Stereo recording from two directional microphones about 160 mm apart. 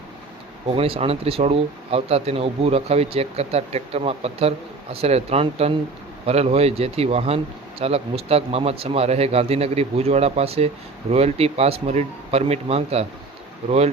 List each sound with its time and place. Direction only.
0.8 s speech: 35° right (ahead or behind)